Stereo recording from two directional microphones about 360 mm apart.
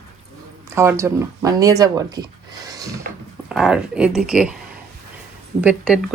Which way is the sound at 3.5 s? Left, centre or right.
Centre.